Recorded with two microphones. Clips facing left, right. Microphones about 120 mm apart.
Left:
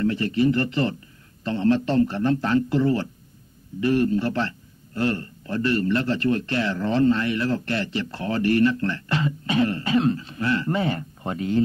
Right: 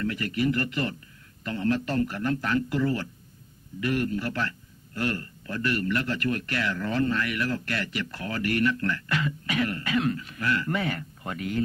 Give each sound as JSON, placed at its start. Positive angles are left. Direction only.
{"t": 0.0, "sound": "a man's voice", "side_deg": 30}